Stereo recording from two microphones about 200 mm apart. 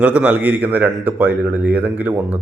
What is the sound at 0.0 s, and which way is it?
Speech, 5° right (ahead or behind).